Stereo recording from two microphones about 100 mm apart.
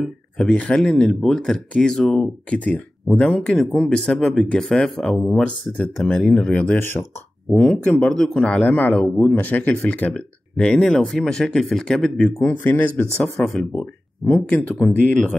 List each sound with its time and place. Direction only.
0.0 s speech: 5° left (ahead or behind)
6.8 s speech: 20° left (ahead or behind)
7.5 s speech: 10° left (ahead or behind)
12.4 s speech: 20° left (ahead or behind)
13.2 s speech: 5° left (ahead or behind)